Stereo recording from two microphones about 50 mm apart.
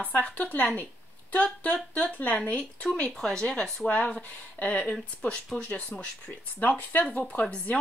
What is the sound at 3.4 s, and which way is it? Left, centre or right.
Speech, centre.